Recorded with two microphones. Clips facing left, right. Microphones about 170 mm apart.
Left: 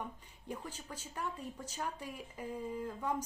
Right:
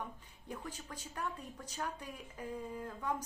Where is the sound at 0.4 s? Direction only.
10° left (ahead or behind).